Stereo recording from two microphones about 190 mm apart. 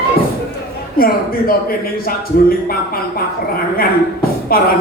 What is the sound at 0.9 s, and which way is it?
A man's voice, 50° left (ahead or behind).